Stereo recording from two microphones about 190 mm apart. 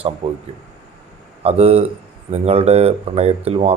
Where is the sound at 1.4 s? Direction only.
30° right (ahead or behind).